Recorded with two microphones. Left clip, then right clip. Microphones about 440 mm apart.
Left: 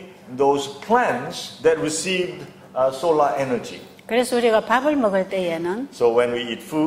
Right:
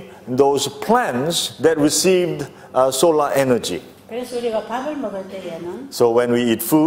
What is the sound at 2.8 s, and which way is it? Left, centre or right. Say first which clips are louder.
Speech: right 3 dB; right.